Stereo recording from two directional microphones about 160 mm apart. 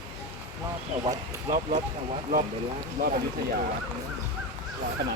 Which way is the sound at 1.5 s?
55° right (ahead or behind).